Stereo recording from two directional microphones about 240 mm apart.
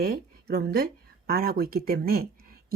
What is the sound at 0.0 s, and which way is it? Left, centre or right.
A woman's voice, right.